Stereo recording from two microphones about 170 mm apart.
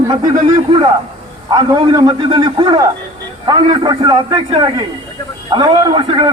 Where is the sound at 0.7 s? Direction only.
30° right (ahead or behind).